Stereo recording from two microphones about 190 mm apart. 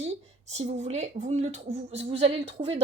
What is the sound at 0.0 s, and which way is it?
A woman's voice, 35° right (ahead or behind).